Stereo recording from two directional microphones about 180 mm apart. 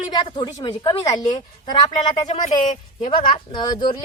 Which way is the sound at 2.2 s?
40° left (ahead or behind).